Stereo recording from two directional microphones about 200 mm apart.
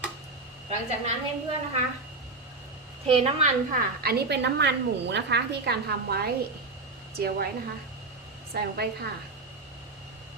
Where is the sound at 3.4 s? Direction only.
45° right (ahead or behind).